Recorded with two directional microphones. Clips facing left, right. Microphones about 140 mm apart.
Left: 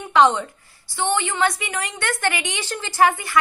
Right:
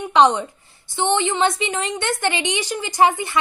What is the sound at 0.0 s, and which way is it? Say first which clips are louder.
A woman's voice: right 1 dB; 20° right (ahead or behind).